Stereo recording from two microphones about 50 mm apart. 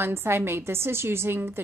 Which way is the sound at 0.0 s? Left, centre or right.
Right.